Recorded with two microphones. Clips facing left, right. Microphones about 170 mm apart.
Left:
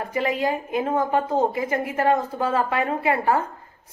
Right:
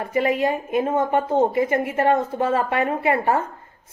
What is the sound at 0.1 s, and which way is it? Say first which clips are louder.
A woman's voice: right 4 dB; 25° right (ahead or behind).